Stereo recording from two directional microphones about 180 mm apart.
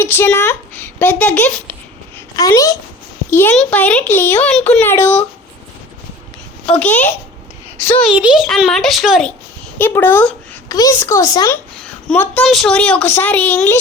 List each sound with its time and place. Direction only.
0.0 s speech: 10° left (ahead or behind)
2.1 s a sound: 15° left (ahead or behind)
3.2 s a child's voice: 10° left (ahead or behind)
6.7 s speech: 10° left (ahead or behind)
8.1 s a child's voice: 5° right (ahead or behind)
9.7 s speech: 10° left (ahead or behind)